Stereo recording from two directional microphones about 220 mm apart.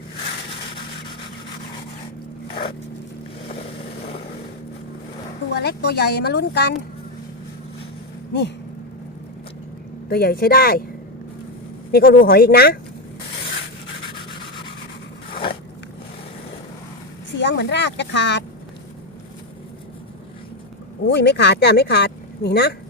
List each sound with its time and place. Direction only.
5.5 s speech: 50° left (ahead or behind)
8.3 s a sound: 50° left (ahead or behind)
10.1 s speech: 45° left (ahead or behind)
11.9 s speech: 45° left (ahead or behind)
15.3 s biting: 25° left (ahead or behind)
17.3 s speech: 55° left (ahead or behind)
21.1 s speech: 50° left (ahead or behind)